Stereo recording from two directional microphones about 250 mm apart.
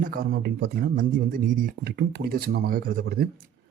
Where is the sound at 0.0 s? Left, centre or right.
Right.